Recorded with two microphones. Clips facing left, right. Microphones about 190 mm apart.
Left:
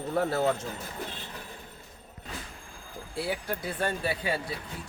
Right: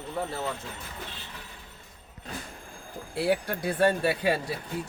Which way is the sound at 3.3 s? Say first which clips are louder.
Right 7 dB; 65° right (ahead or behind).